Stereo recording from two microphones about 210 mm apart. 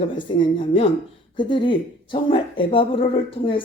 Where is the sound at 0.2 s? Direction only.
20° left (ahead or behind).